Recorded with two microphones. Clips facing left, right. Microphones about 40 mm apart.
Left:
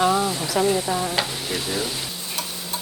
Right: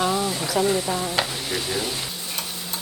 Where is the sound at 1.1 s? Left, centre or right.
Centre.